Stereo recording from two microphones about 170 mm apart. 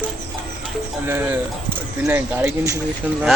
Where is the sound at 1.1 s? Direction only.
10° right (ahead or behind).